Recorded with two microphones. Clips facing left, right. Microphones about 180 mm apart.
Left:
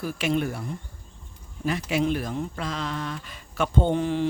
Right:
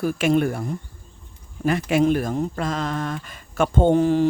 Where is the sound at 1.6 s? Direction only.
50° right (ahead or behind).